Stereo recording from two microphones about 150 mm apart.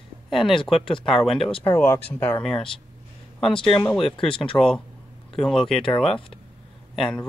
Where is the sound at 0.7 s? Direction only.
35° left (ahead or behind).